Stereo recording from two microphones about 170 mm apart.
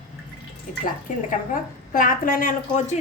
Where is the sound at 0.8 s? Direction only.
50° left (ahead or behind).